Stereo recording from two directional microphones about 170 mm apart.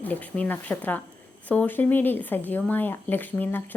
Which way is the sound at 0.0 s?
10° left (ahead or behind).